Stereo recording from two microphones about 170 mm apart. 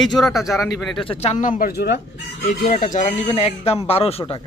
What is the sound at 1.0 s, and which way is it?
Speech, 35° left (ahead or behind).